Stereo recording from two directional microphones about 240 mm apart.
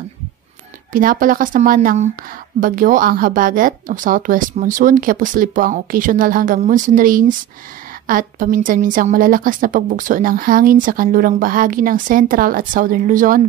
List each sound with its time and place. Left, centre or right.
0.9 s a woman's voice: right